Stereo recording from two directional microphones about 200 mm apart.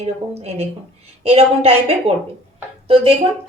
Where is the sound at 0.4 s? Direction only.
30° right (ahead or behind).